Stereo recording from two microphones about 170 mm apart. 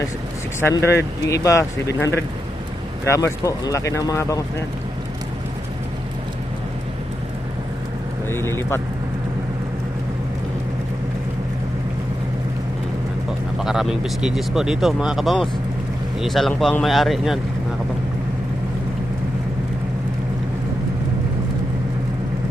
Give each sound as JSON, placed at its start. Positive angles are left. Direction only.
{"t": 0.6, "sound": "speech", "side_deg": 15}
{"t": 8.3, "sound": "speech", "side_deg": 15}
{"t": 13.6, "sound": "speech", "side_deg": -5}